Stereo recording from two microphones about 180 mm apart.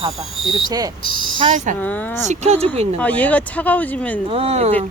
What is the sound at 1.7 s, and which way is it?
Speech, 10° left (ahead or behind).